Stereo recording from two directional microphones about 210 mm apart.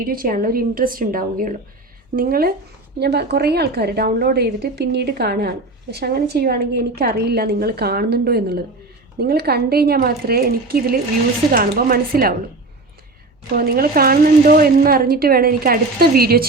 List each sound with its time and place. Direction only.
0.0 s a woman's voice: 45° right (ahead or behind)
13.5 s a woman's voice: 45° right (ahead or behind)